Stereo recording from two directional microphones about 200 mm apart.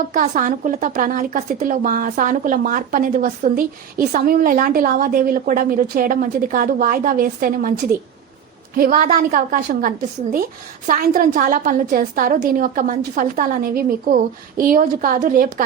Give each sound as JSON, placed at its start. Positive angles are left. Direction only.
{"t": 0.1, "sound": "a woman's voice", "side_deg": -40}
{"t": 8.7, "sound": "a woman's voice", "side_deg": -45}